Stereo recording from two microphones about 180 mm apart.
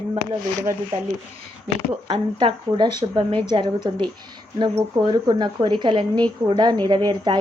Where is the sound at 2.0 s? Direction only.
30° right (ahead or behind).